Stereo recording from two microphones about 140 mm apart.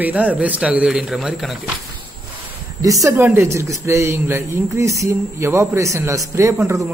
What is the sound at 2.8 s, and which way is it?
Speech, 25° right (ahead or behind).